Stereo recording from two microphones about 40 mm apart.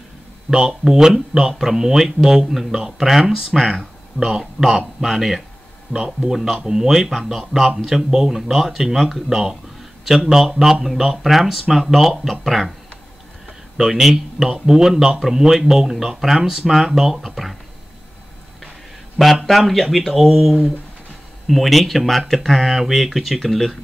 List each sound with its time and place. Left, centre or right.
0.5 s speech: centre
5.9 s speech: centre
6.3 s speech: centre
13.7 s speech: centre
19.1 s speech: centre